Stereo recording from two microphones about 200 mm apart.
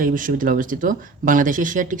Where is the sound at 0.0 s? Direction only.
40° right (ahead or behind).